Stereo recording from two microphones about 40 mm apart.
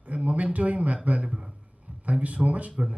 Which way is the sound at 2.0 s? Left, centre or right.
Right.